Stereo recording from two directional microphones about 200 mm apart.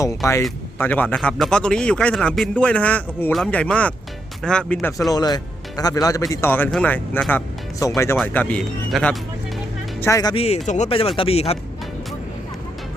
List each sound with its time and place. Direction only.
0.8 s a man's voice: 10° left (ahead or behind)
10.0 s speech: 15° left (ahead or behind)
10.3 s speech: 30° left (ahead or behind)